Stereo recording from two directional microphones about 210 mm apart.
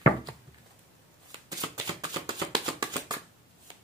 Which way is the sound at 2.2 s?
20° right (ahead or behind).